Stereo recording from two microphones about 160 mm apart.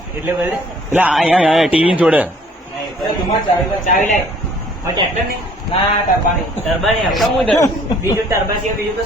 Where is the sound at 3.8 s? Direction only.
55° left (ahead or behind).